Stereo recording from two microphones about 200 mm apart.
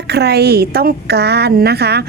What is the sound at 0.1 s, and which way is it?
A woman's voice, 55° right (ahead or behind).